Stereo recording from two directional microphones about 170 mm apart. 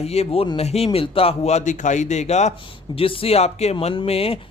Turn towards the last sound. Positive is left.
turn(degrees=35)  # may be behind; listen again after turning